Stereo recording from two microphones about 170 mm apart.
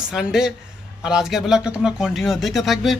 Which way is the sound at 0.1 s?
5° right (ahead or behind).